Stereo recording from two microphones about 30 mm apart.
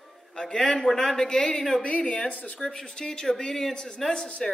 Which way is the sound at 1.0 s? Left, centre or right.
Left.